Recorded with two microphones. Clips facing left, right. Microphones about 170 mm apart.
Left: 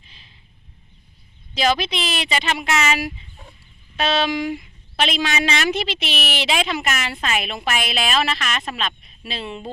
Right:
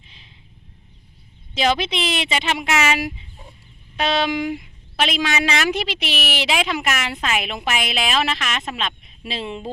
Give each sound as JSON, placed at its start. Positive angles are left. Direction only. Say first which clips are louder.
{"t": 1.5, "sound": "speech", "louder": "even", "side_deg": -20}